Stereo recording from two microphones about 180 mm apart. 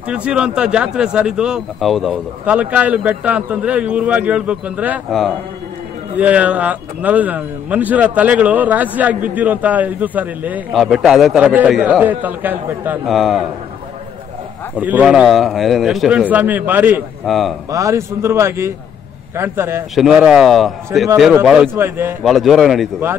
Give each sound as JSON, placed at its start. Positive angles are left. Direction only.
{"t": 0.1, "sound": "a man's voice", "side_deg": -5}
{"t": 6.1, "sound": "a man's voice", "side_deg": -10}
{"t": 14.8, "sound": "a man's voice", "side_deg": -10}
{"t": 17.3, "sound": "speech", "side_deg": 0}
{"t": 17.6, "sound": "a man's voice", "side_deg": -20}
{"t": 20.0, "sound": "a man's voice", "side_deg": -5}
{"t": 22.2, "sound": "speech", "side_deg": 0}